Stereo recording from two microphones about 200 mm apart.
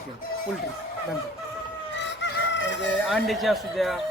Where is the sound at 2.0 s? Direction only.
60° left (ahead or behind).